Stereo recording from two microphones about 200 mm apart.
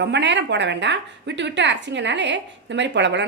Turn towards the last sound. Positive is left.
turn(degrees=-60)  # may be behind; listen again after turning